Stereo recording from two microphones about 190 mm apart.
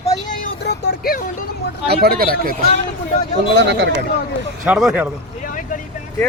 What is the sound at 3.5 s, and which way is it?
Speech, 70° right (ahead or behind).